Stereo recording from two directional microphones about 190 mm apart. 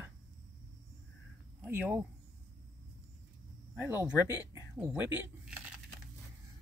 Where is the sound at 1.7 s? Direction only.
10° right (ahead or behind).